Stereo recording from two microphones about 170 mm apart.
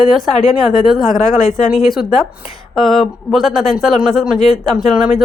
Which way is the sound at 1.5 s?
50° left (ahead or behind).